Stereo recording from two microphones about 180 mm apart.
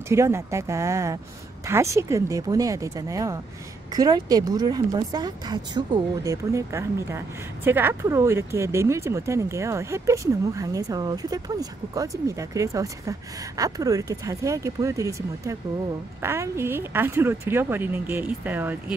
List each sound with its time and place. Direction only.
0.1 s speech: 15° right (ahead or behind)